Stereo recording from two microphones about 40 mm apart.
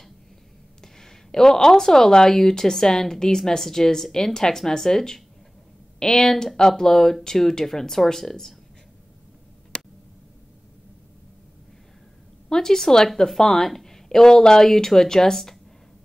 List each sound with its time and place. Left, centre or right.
0.9 s a woman's voice: centre
9.7 s a sound: left
12.4 s a woman's voice: centre